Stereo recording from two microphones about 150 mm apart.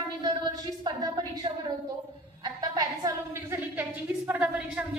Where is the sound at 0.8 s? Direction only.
25° right (ahead or behind).